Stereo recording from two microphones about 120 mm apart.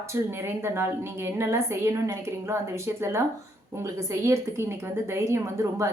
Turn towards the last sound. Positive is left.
turn(degrees=-25)  # may be behind; listen again after turning